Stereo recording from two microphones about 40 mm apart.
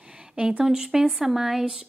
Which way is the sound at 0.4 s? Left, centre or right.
Right.